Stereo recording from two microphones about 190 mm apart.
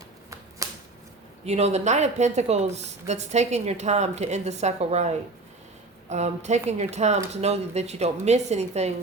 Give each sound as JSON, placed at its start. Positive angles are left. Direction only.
{"t": 0.6, "sound": "shuffling cards", "side_deg": -15}
{"t": 1.5, "sound": "speech", "side_deg": -35}